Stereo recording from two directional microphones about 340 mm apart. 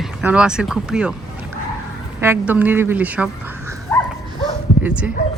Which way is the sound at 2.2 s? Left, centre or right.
Centre.